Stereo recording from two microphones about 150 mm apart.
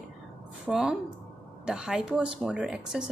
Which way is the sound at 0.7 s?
5° right (ahead or behind).